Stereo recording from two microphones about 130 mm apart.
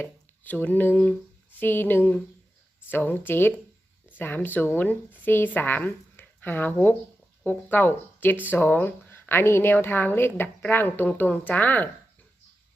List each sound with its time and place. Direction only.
0.0 s a woman's voice: 10° left (ahead or behind)